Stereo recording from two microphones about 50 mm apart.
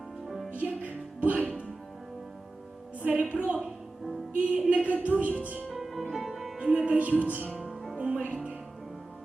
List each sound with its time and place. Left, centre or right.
0.3 s music: centre
0.5 s music: right
3.0 s a woman's voice: right
5.7 s music: centre
6.6 s speech: right
7.7 s music: centre
7.9 s music: right